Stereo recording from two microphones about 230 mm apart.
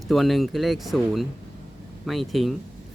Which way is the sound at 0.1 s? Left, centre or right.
Centre.